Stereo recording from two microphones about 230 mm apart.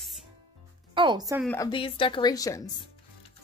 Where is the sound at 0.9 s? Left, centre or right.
Centre.